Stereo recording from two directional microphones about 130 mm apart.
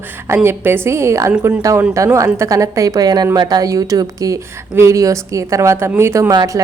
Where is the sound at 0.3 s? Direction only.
15° right (ahead or behind).